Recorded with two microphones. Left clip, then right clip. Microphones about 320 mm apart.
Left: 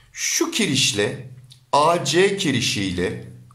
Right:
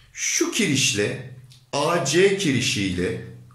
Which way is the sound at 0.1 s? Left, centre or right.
Centre.